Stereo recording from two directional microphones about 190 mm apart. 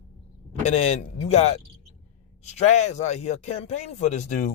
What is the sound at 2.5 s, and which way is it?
Speech, 35° left (ahead or behind).